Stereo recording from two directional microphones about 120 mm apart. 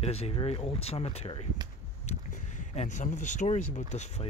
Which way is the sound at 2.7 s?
80° left.